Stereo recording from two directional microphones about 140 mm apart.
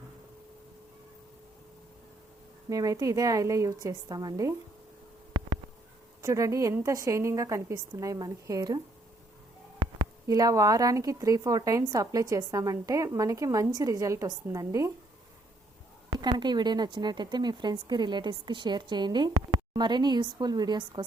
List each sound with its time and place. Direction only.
2.6 s speech: 25° right (ahead or behind)
6.2 s speech: 25° right (ahead or behind)
9.8 s speech: 25° right (ahead or behind)
16.0 s a woman's voice: 30° right (ahead or behind)